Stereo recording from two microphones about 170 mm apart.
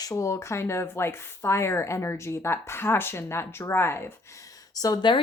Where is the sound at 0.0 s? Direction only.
20° left (ahead or behind).